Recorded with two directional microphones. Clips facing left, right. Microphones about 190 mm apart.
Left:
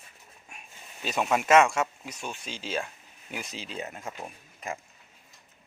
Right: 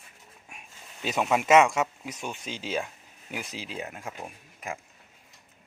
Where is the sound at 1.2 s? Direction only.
5° right (ahead or behind).